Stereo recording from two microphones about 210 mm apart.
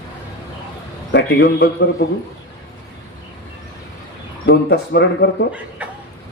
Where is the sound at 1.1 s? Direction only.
55° left (ahead or behind).